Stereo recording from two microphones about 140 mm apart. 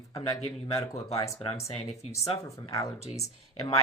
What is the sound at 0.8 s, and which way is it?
Speech, 20° left (ahead or behind).